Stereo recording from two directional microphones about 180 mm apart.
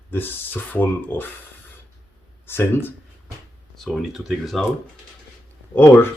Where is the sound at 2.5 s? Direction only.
15° left (ahead or behind).